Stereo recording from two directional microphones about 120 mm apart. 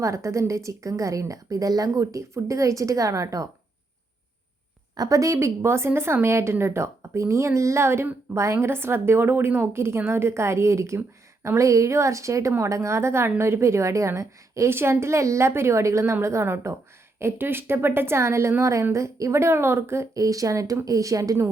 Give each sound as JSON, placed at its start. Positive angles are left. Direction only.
{"t": 0.0, "sound": "a woman's voice", "side_deg": -25}
{"t": 4.9, "sound": "a woman's voice", "side_deg": -30}